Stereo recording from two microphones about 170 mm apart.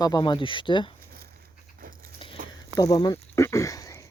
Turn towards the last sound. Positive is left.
turn(degrees=20)  # may be behind; listen again after turning